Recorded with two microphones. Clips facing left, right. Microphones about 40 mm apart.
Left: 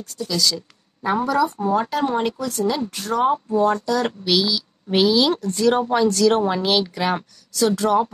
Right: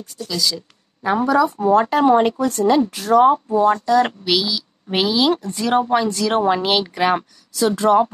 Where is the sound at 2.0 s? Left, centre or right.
Centre.